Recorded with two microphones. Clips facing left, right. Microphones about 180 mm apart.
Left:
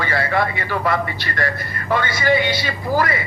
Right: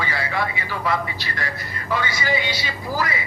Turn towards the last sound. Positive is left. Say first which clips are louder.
# left 6 dB
turn(degrees=55)  # may be behind; listen again after turning